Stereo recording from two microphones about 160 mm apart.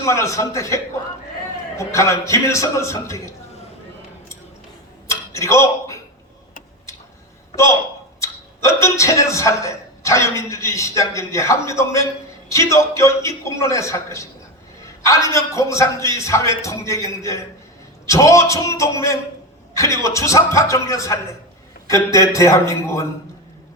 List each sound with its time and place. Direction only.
0.0 s a man's voice: 20° left (ahead or behind)
1.8 s a man's voice: 20° left (ahead or behind)
5.0 s a sound: 20° left (ahead or behind)
8.2 s a man's voice: 20° left (ahead or behind)